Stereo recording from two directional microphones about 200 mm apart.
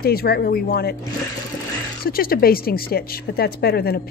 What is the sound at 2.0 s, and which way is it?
A woman's voice, 50° left (ahead or behind).